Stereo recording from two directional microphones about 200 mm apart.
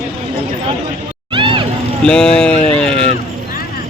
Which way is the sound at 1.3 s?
25° right (ahead or behind).